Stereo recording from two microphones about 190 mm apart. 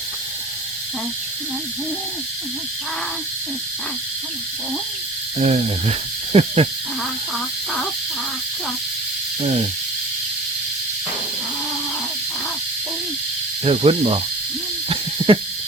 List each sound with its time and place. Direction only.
5.4 s speech: 35° right (ahead or behind)
13.7 s speech: 30° right (ahead or behind)
15.2 s a sound: 30° right (ahead or behind)